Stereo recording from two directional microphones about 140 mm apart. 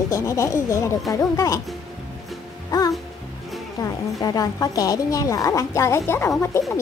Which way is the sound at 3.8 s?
25° left (ahead or behind).